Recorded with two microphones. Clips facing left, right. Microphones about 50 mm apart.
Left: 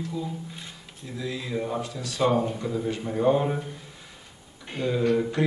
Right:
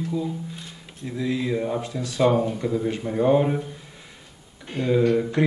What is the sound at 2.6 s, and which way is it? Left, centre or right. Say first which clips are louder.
Speech: right 4 dB; centre.